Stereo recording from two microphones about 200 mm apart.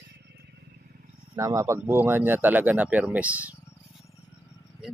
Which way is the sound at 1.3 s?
15° right (ahead or behind).